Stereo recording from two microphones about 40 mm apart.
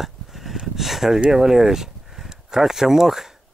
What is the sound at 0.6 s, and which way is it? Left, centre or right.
Speech, centre.